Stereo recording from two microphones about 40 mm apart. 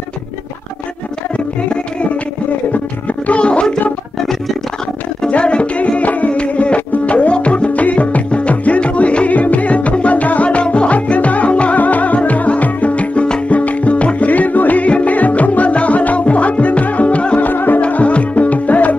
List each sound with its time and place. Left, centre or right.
1.3 s music: left
2.7 s speech: left
5.3 s music: left
17.4 s music: left
17.7 s music: left